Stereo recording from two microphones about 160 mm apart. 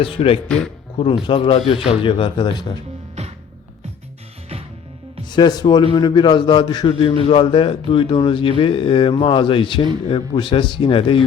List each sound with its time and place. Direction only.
0.0 s a man's voice: 35° left (ahead or behind)
0.4 s speech: 5° left (ahead or behind)
0.9 s a man's voice: 30° left (ahead or behind)
5.3 s a man's voice: 25° left (ahead or behind)